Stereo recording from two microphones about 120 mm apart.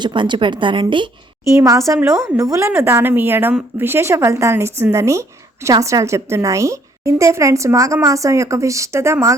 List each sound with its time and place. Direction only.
0.0 s a woman's voice: 40° right (ahead or behind)
1.5 s a woman's voice: 25° right (ahead or behind)